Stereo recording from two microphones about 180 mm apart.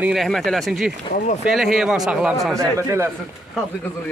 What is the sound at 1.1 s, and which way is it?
Speech, 45° left (ahead or behind).